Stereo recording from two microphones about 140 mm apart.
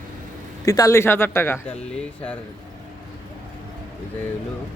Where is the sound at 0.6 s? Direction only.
25° left (ahead or behind).